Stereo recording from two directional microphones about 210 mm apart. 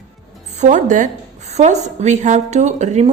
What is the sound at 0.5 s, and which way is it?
A woman's voice, 35° right (ahead or behind).